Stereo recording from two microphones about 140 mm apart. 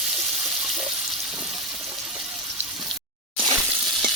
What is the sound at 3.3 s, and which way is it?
Water, 30° right (ahead or behind).